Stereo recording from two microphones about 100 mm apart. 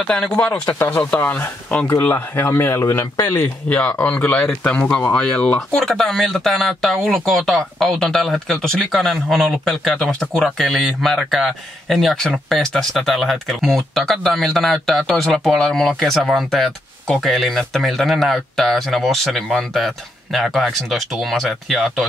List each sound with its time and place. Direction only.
0.0 s speech: 5° left (ahead or behind)
0.7 s speech: 25° left (ahead or behind); by 22.0 s centre (ahead or behind)